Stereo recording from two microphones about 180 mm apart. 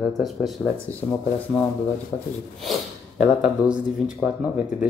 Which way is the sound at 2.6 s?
Centre (ahead or behind).